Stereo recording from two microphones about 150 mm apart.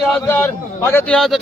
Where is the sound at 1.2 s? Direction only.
Centre (ahead or behind).